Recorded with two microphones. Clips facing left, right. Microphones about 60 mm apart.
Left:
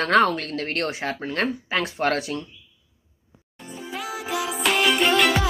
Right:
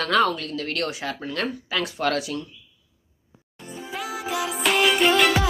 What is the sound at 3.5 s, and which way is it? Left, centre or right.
Music, centre.